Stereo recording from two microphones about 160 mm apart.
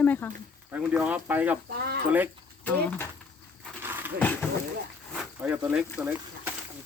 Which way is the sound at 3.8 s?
15° right (ahead or behind).